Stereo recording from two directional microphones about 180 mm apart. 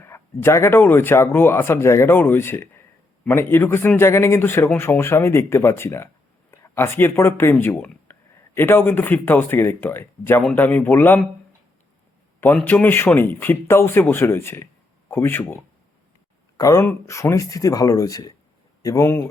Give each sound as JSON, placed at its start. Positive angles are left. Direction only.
{"t": 0.0, "sound": "speech", "side_deg": 15}
{"t": 12.4, "sound": "speech", "side_deg": 10}